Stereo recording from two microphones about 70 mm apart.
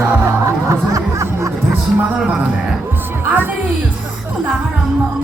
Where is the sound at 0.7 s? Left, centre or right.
Right.